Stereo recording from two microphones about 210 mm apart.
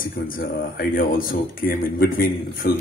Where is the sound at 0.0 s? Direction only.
45° left (ahead or behind).